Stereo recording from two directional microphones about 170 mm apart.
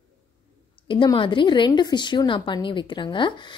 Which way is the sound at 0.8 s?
30° left (ahead or behind).